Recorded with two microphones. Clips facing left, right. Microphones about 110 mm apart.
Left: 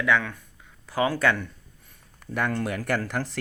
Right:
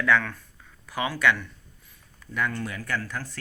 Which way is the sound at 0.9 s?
35° left (ahead or behind).